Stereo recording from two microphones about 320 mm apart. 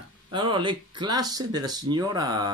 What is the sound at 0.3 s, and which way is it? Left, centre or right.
Speech, centre.